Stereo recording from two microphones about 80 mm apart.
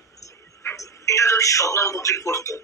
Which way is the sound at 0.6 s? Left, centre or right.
Left.